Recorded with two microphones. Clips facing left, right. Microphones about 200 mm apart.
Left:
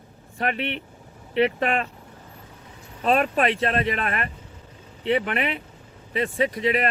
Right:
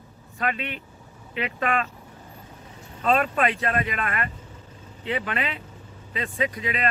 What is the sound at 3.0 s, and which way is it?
Speech, 25° left (ahead or behind).